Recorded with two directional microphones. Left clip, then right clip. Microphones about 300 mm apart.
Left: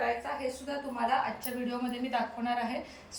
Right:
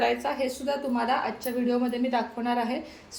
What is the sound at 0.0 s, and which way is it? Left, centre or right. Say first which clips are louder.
A woman's voice: right 6 dB; right.